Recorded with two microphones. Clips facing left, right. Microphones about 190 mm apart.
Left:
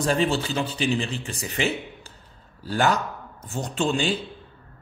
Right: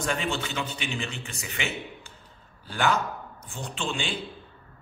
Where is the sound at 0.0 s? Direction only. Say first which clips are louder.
Left 6 dB; 35° left (ahead or behind).